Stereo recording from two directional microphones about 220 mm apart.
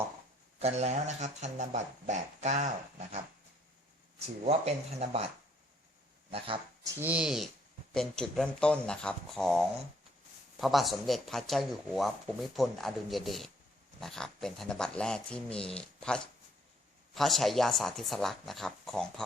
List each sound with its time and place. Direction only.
0.6 s speech: 30° right (ahead or behind)
4.4 s speech: 30° right (ahead or behind)
6.3 s speech: 25° right (ahead or behind)
7.0 s speech: 5° right (ahead or behind)